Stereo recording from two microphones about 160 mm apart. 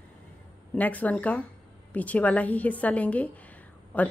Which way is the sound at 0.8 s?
10° left (ahead or behind).